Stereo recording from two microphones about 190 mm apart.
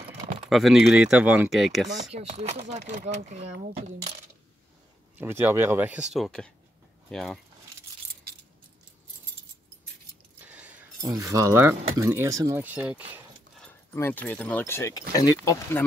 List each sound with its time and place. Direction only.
0.5 s speech: centre (ahead or behind)
2.1 s speech: 35° right (ahead or behind)
5.2 s speech: 10° right (ahead or behind)
10.4 s a sound: 10° right (ahead or behind)
11.0 s speech: 20° right (ahead or behind)
13.6 s speech: 10° left (ahead or behind)